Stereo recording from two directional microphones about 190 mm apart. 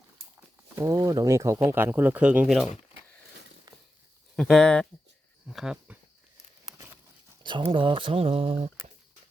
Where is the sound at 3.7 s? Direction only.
20° right (ahead or behind).